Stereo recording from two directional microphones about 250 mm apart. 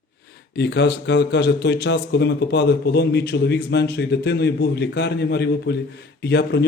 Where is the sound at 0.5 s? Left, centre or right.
Left.